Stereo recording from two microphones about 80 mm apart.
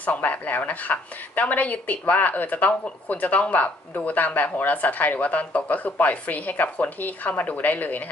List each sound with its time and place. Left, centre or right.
0.0 s a woman's voice: centre